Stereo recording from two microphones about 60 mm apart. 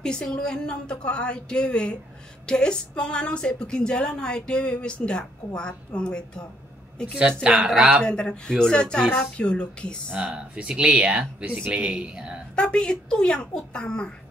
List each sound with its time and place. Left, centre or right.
0.0 s a woman's voice: centre
7.4 s speech: centre
8.0 s a woman's voice: centre
10.1 s speech: centre
12.5 s a woman's voice: centre